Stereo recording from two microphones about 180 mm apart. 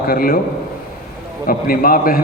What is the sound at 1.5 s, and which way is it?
Speech, 55° left (ahead or behind).